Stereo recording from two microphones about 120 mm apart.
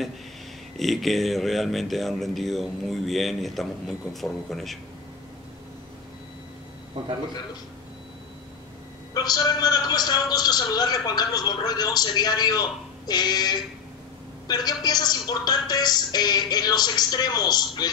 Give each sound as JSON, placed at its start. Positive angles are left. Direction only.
{"t": 0.7, "sound": "speech", "side_deg": 0}
{"t": 7.0, "sound": "a man's voice", "side_deg": -40}
{"t": 9.1, "sound": "a man's voice", "side_deg": 35}